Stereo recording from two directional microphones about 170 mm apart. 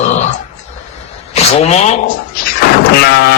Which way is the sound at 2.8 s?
65° left (ahead or behind).